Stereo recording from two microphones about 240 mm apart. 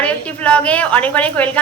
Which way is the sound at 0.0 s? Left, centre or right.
Centre.